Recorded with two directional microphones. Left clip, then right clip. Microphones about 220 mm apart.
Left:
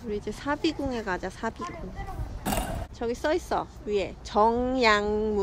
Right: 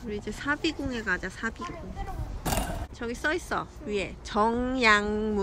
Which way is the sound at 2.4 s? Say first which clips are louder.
Left 1 dB; 25° right (ahead or behind).